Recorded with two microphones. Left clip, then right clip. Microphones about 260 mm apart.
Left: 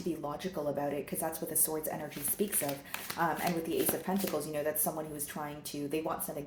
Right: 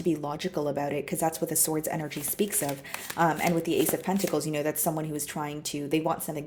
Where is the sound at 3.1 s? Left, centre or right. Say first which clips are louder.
Right 7 dB; right.